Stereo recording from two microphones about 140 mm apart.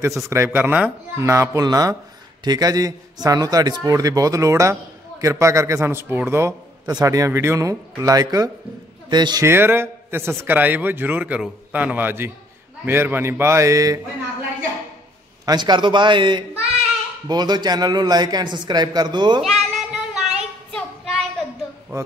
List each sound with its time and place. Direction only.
0.3 s a man's voice: 15° right (ahead or behind)
9.5 s a man's voice: 15° right (ahead or behind)
15.4 s speech: 30° right (ahead or behind)
19.4 s child singing: centre (ahead or behind)